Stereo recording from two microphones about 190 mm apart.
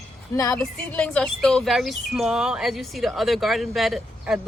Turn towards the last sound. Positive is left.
turn(degrees=0)  # may be behind; listen again after turning